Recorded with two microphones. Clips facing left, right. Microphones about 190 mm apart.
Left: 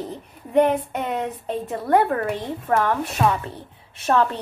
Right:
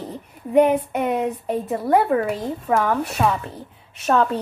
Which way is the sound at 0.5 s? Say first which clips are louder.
Right 2 dB; 10° right (ahead or behind).